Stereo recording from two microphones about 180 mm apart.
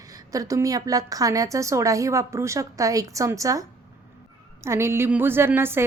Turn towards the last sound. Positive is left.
turn(degrees=-15)  # may be behind; listen again after turning